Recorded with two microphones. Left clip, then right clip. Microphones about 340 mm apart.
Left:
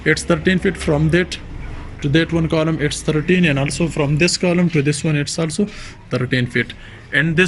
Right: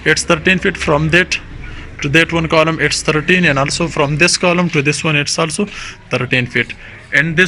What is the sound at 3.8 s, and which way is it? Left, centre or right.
Speech, right.